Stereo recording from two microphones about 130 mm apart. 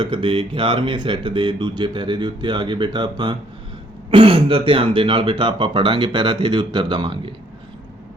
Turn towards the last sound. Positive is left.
turn(degrees=-40)  # may be behind; listen again after turning